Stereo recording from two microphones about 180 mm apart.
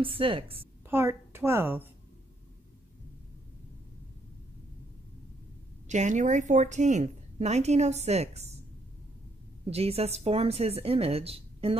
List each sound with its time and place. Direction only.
0.0 s a woman's voice: 30° right (ahead or behind)
0.8 s a woman's voice: 15° right (ahead or behind)
5.9 s a woman's voice: 40° right (ahead or behind)
9.7 s a woman's voice: 35° right (ahead or behind)